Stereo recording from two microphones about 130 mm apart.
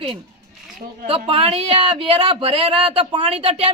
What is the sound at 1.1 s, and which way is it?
Speech, 45° right (ahead or behind).